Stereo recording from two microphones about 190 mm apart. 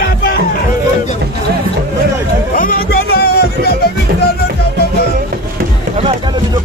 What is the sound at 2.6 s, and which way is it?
Music, 50° left (ahead or behind).